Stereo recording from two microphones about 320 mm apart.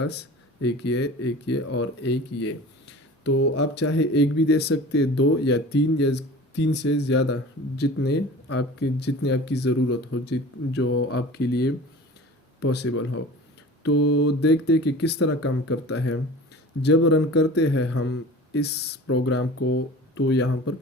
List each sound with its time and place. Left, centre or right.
0.1 s speech: left
14.0 s speech: left
14.3 s speech: left
17.7 s speech: left
18.5 s speech: left